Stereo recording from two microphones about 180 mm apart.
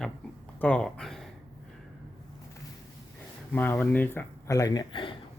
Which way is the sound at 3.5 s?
10° left (ahead or behind).